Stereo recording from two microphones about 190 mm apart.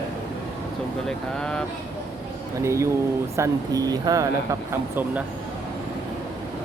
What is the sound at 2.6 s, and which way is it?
Speech, 15° right (ahead or behind).